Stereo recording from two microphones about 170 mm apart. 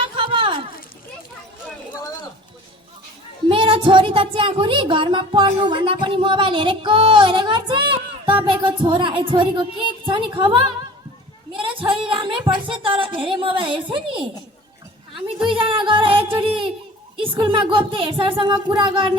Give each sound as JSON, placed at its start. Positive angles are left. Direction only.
{"t": 0.0, "sound": "a sound", "side_deg": -30}
{"t": 3.5, "sound": "a woman's voice", "side_deg": -30}
{"t": 15.5, "sound": "music", "side_deg": -30}
{"t": 17.2, "sound": "a woman's voice", "side_deg": -30}